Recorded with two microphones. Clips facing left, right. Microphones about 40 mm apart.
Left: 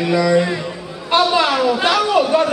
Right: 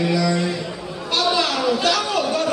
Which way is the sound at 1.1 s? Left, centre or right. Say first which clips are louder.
Left 6 dB; left.